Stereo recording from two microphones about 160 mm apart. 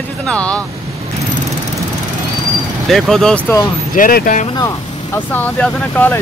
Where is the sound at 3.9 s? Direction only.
65° left (ahead or behind).